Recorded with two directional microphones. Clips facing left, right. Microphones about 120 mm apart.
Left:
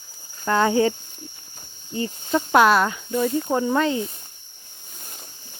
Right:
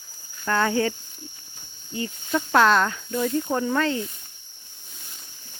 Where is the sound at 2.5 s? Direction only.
10° left (ahead or behind).